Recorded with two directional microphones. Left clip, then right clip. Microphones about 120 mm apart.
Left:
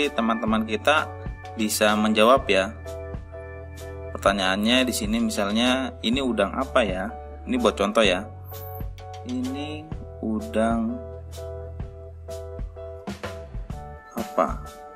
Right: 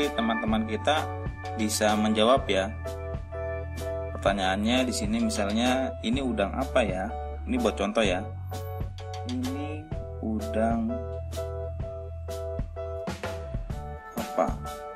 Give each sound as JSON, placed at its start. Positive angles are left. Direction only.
{"t": 0.0, "sound": "speech", "side_deg": 25}
{"t": 3.3, "sound": "music", "side_deg": 0}
{"t": 4.2, "sound": "speech", "side_deg": 20}
{"t": 9.3, "sound": "music", "side_deg": 15}
{"t": 10.5, "sound": "speech", "side_deg": 20}